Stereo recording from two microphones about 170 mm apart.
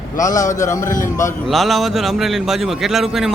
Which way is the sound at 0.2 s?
20° left (ahead or behind).